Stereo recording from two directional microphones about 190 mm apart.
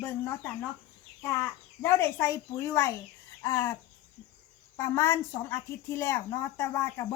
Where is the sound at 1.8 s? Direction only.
15° left (ahead or behind).